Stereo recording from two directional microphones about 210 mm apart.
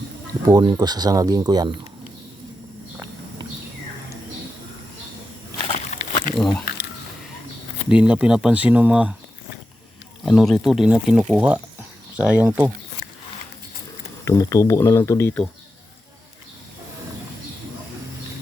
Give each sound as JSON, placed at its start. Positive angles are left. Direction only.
{"t": 0.4, "sound": "speech", "side_deg": -20}
{"t": 5.6, "sound": "a sound", "side_deg": 30}
{"t": 6.4, "sound": "speech", "side_deg": 5}
{"t": 7.9, "sound": "speech", "side_deg": -5}
{"t": 10.2, "sound": "speech", "side_deg": 0}
{"t": 14.3, "sound": "speech", "side_deg": 15}